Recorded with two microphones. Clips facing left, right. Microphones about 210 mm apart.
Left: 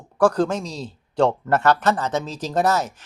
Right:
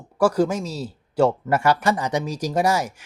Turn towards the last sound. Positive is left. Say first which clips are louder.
# even
turn(degrees=-10)  # may be behind; listen again after turning